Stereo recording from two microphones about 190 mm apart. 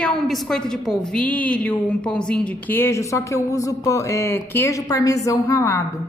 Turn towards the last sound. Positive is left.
turn(degrees=15)  # may be behind; listen again after turning